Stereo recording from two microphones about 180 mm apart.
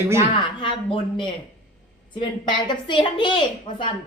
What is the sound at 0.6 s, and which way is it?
Speech, 30° left (ahead or behind).